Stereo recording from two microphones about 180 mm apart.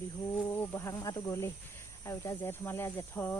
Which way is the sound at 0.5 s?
15° left (ahead or behind).